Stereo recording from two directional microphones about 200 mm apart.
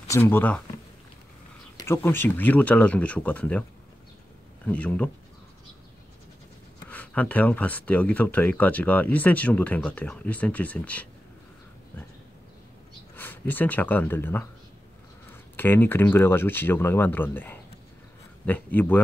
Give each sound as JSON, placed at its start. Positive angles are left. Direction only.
{"t": 0.1, "sound": "speech", "side_deg": 10}
{"t": 1.8, "sound": "speech", "side_deg": 10}
{"t": 4.6, "sound": "speech", "side_deg": 5}
{"t": 6.9, "sound": "speech", "side_deg": 5}
{"t": 13.1, "sound": "speech", "side_deg": 10}
{"t": 15.5, "sound": "speech", "side_deg": 10}